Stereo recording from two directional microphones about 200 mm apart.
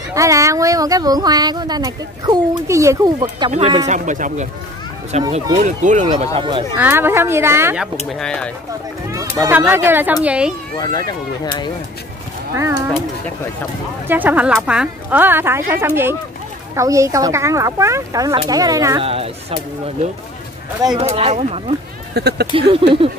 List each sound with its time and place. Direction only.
0.1 s speech: 15° right (ahead or behind); by 6.0 s 40° right (ahead or behind)
6.0 s speech: 25° right (ahead or behind)
6.8 s speech: 10° right (ahead or behind)
8.1 s speech: 5° left (ahead or behind)
9.1 s speech: 15° right (ahead or behind)
12.5 s speech: 15° right (ahead or behind)
14.0 s speech: 10° right (ahead or behind)
19.0 s speech: 30° right (ahead or behind)
22.1 s speech: 55° right (ahead or behind)
22.5 s speech: 25° right (ahead or behind)